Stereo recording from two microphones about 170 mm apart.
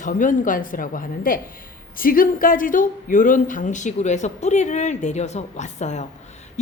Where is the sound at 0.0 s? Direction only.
50° left (ahead or behind).